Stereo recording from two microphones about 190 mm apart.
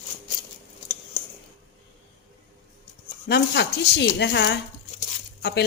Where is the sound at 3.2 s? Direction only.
60° left (ahead or behind).